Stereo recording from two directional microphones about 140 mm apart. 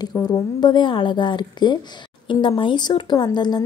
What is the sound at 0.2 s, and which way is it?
A woman's voice, 30° left (ahead or behind).